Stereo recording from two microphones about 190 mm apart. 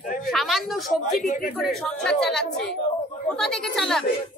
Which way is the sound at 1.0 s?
45° left (ahead or behind).